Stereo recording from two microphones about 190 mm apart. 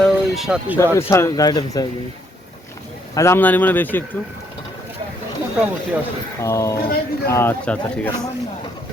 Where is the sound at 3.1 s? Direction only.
15° left (ahead or behind).